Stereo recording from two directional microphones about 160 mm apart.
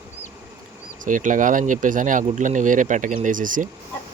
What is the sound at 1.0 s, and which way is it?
Speech, 55° right (ahead or behind).